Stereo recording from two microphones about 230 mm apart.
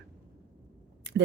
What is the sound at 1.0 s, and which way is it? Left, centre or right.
Speech, right.